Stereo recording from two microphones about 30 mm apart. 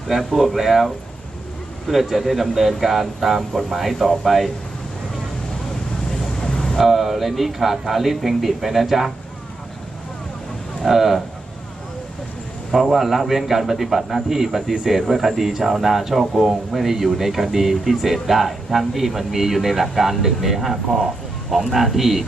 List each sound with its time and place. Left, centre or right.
0.3 s speech: centre
1.9 s speech: centre
6.1 s vehicle: centre
6.7 s a man's voice: centre
10.8 s a man's voice: centre
12.7 s a man's voice: centre